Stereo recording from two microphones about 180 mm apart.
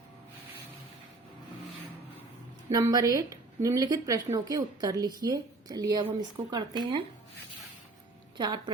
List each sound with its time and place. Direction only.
2.7 s speech: 20° right (ahead or behind)
8.4 s speech: 25° right (ahead or behind)